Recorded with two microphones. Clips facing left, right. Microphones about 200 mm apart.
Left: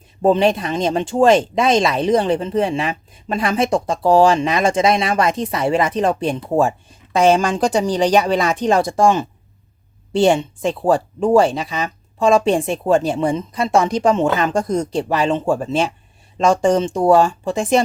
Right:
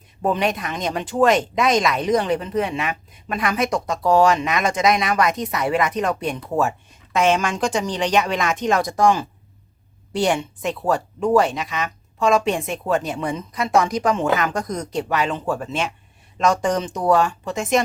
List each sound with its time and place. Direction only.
0.2 s speech: 30° left (ahead or behind)